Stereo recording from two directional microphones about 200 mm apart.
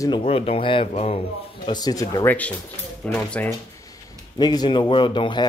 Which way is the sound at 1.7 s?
20° left (ahead or behind).